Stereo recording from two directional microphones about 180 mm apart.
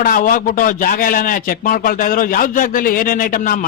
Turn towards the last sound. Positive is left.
turn(degrees=50)  # may be behind; listen again after turning